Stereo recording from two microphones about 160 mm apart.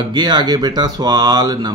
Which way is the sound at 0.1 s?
25° right (ahead or behind).